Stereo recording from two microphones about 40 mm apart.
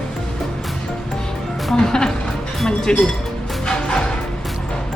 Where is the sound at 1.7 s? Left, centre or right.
Centre.